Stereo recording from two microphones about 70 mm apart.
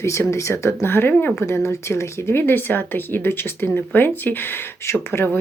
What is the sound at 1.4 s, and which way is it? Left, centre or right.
Speech, left.